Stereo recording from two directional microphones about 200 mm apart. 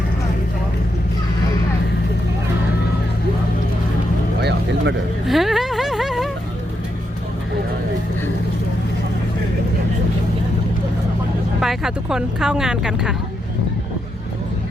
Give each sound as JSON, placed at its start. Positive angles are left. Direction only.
{"t": 4.4, "sound": "vehicle", "side_deg": -55}
{"t": 5.2, "sound": "a sound", "side_deg": 0}
{"t": 11.6, "sound": "speech", "side_deg": 0}